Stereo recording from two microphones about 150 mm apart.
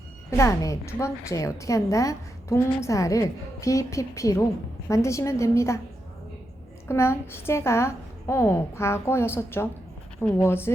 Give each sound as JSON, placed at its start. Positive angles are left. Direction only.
{"t": 0.3, "sound": "a woman's voice", "side_deg": 20}
{"t": 6.8, "sound": "a woman's voice", "side_deg": 15}